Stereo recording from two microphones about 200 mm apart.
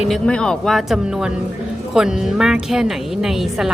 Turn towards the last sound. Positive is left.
turn(degrees=0)  # may be behind; listen again after turning